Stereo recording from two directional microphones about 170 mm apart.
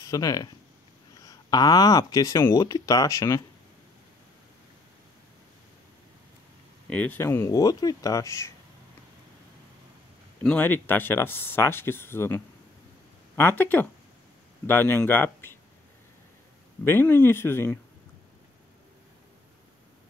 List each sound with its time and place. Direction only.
0.0 s speech: 20° left (ahead or behind)
6.9 s speech: 10° left (ahead or behind)
10.4 s speech: 10° left (ahead or behind)
16.8 s speech: 15° left (ahead or behind)